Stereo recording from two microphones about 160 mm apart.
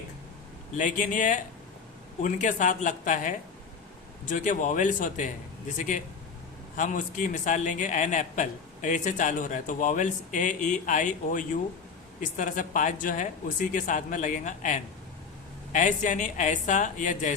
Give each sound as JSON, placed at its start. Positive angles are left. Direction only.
{"t": 0.8, "sound": "a man's voice", "side_deg": 55}